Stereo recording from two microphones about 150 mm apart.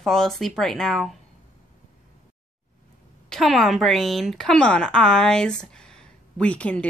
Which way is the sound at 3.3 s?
Centre (ahead or behind).